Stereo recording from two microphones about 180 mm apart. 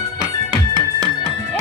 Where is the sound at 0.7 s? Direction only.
25° right (ahead or behind).